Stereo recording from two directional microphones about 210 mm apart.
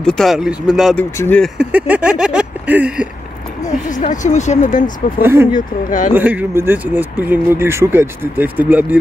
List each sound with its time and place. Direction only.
0.0 s a sound: centre (ahead or behind)
1.1 s speech: 10° left (ahead or behind)
1.6 s a sound: 5° right (ahead or behind)
3.9 s speech: 35° left (ahead or behind)
5.2 s speech: 10° right (ahead or behind)
5.9 s speech: 40° left (ahead or behind)
6.1 s speech: 10° right (ahead or behind)